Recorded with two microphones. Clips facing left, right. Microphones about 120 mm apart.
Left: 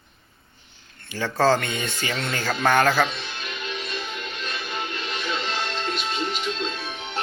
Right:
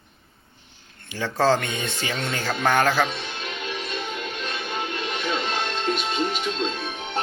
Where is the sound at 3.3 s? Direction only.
45° right (ahead or behind).